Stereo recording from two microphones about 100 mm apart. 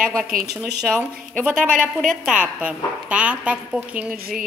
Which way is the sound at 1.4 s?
5° right (ahead or behind).